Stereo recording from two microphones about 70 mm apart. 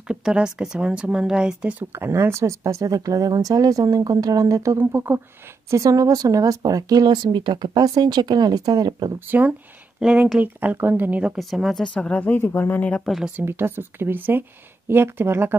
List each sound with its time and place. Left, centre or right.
0.1 s speech: centre
1.9 s speech: right
4.7 s speech: right
5.7 s speech: right
9.3 s speech: right
9.9 s speech: centre
10.4 s speech: right
11.3 s speech: centre
11.8 s speech: centre
13.5 s speech: right